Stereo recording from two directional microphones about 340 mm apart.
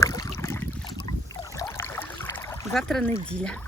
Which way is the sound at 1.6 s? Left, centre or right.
Centre.